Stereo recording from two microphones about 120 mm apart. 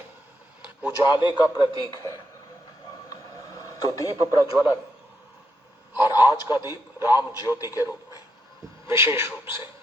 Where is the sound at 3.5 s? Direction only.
30° left (ahead or behind).